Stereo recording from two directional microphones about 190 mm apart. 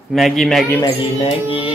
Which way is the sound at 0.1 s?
Centre (ahead or behind).